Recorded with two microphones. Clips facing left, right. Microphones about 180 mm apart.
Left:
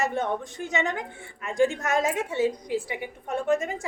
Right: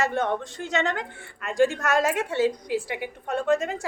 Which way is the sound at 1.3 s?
70° right (ahead or behind).